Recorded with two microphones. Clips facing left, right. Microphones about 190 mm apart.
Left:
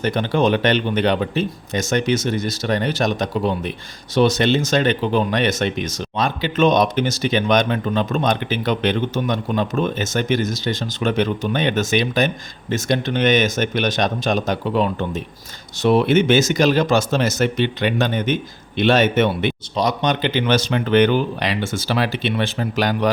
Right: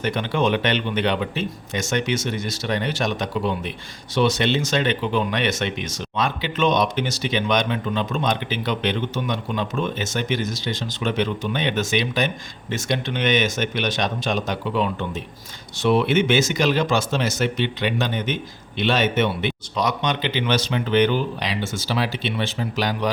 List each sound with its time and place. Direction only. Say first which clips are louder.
0.0 s speech: left 4 dB; 40° left (ahead or behind)
19.7 s speech: left 3 dB; 35° left (ahead or behind); by 23.0 s 55° left (ahead or behind)